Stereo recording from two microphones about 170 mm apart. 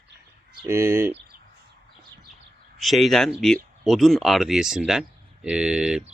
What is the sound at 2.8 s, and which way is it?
Speech, centre (ahead or behind).